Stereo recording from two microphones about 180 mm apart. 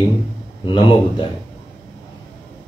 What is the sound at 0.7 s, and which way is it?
Speech, 25° left (ahead or behind).